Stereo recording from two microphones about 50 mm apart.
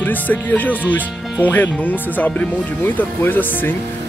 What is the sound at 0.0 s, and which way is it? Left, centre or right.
Speech, left.